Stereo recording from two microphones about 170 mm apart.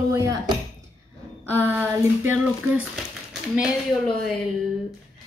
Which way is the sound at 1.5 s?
10° right (ahead or behind).